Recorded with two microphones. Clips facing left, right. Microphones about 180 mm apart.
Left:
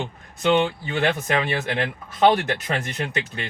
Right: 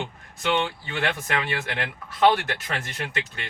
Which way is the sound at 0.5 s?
20° left (ahead or behind).